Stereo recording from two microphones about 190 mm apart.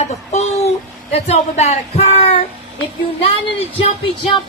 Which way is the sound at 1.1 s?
35° left (ahead or behind).